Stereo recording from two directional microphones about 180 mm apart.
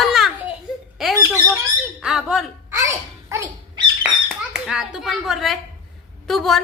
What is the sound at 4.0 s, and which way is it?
A child's voice, 5° right (ahead or behind).